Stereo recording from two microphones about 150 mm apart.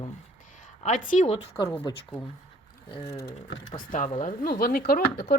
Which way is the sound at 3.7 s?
60° left (ahead or behind).